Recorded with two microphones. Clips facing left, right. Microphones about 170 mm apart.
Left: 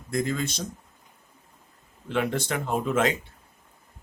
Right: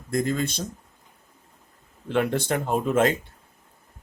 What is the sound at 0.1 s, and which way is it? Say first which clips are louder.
Speech: right 2 dB; 50° right (ahead or behind).